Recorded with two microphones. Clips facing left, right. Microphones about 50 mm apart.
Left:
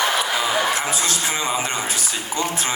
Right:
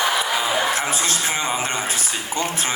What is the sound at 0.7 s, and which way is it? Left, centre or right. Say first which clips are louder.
A man's voice: even; right.